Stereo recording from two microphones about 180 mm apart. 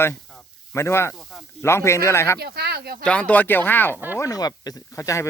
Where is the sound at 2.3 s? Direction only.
60° right (ahead or behind).